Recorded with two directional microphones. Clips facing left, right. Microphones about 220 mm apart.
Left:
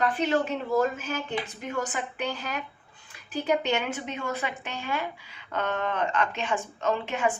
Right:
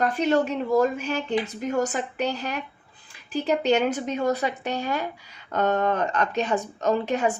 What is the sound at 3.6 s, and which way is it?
A woman's voice, 40° right (ahead or behind).